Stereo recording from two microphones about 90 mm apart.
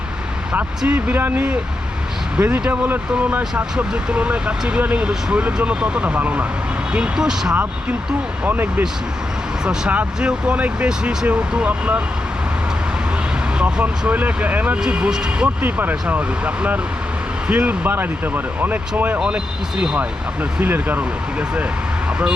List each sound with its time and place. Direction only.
0.8 s speech: 15° right (ahead or behind)
7.5 s speech: 20° right (ahead or behind)
13.6 s speech: 10° right (ahead or behind)
15.6 s speech: 20° right (ahead or behind)
17.5 s speech: 15° right (ahead or behind)